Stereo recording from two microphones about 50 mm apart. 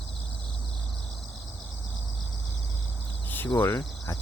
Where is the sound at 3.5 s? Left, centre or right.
Left.